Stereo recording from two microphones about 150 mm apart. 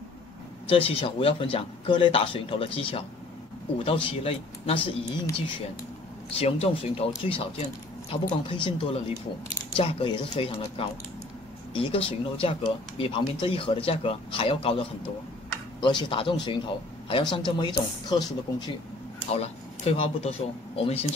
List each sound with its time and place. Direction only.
0.7 s speech: 40° left (ahead or behind)
6.3 s speech: 40° left (ahead or behind)
19.3 s speech: 45° left (ahead or behind)